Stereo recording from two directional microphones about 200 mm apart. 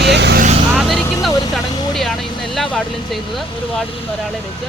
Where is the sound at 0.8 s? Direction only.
Centre (ahead or behind).